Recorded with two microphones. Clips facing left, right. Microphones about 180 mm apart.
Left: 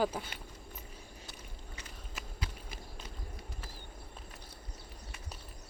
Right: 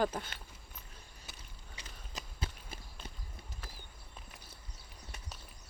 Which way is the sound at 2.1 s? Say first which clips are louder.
Right 1 dB; 25° right (ahead or behind).